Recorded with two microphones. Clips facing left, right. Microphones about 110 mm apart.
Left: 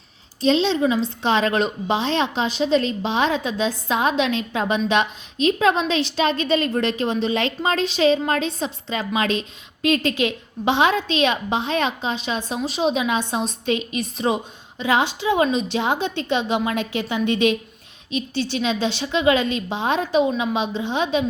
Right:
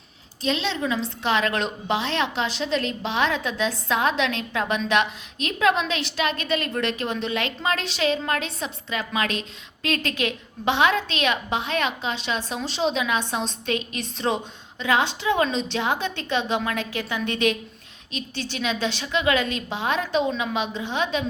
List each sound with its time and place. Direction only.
0.4 s a woman's voice: 25° left (ahead or behind)